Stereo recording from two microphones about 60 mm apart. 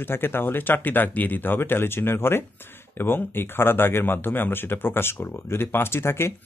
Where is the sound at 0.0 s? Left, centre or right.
Left.